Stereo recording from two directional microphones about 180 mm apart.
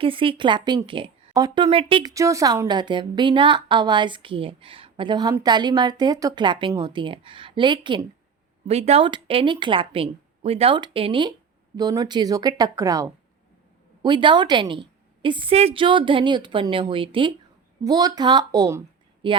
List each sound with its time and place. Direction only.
0.0 s a woman's voice: 30° right (ahead or behind)
2.1 s a woman's voice: 15° right (ahead or behind)